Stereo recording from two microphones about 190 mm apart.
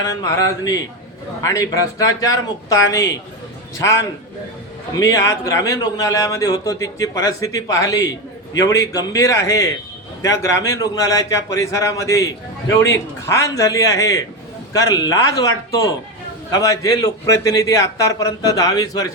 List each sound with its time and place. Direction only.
0.0 s a man's voice: 20° left (ahead or behind)